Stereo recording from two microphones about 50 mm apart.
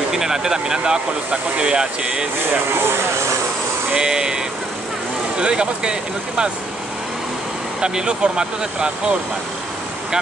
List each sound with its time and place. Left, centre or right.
0.1 s speech: centre
3.9 s speech: centre
5.4 s speech: centre
7.8 s speech: centre